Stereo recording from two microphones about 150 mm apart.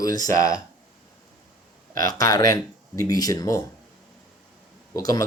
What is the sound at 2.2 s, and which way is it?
Speech, 25° left (ahead or behind).